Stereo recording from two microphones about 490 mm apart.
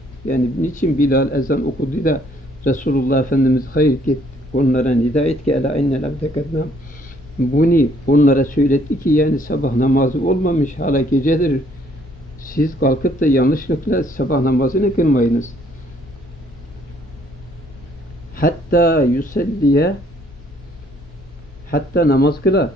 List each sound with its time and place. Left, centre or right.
0.3 s speech: centre
7.5 s speech: centre
18.3 s speech: centre
21.6 s speech: centre